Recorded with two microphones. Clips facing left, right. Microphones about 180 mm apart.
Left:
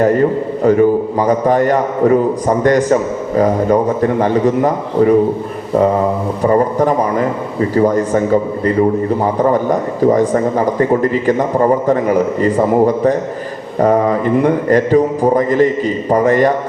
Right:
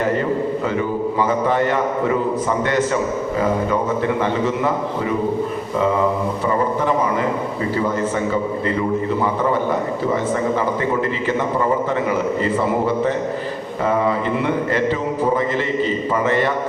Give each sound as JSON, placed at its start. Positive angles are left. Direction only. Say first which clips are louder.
{"t": 0.0, "sound": "a man's voice", "louder": "left 7 dB", "side_deg": 45}